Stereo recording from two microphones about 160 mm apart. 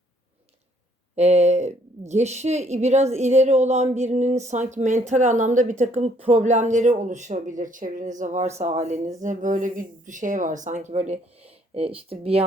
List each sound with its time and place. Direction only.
1.1 s a woman's voice: 45° right (ahead or behind)